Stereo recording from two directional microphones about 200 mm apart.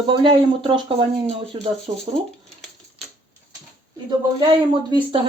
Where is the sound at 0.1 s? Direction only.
25° right (ahead or behind).